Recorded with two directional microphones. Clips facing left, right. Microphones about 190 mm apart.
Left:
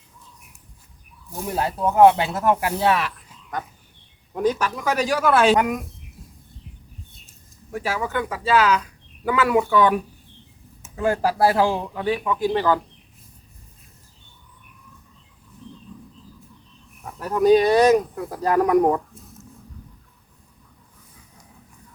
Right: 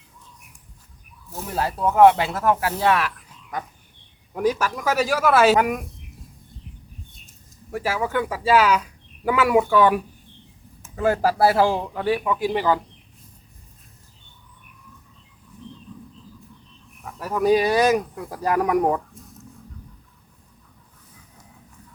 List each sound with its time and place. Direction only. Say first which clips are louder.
1.3 s speech: left 1 dB; 15° left (ahead or behind)
4.4 s speech: even; 5° right (ahead or behind)
7.7 s speech: right 1 dB; 10° right (ahead or behind)
17.2 s speech: left 3 dB; 5° right (ahead or behind)